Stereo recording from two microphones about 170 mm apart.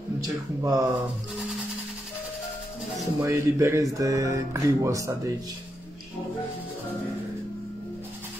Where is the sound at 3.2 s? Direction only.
15° right (ahead or behind).